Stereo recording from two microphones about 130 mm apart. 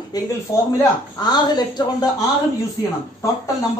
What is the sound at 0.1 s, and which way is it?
A woman's voice, 30° left (ahead or behind).